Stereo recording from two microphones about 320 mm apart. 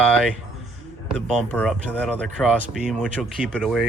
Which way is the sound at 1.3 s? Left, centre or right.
Centre.